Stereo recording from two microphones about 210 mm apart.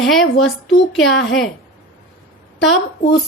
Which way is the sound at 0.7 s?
65° left (ahead or behind).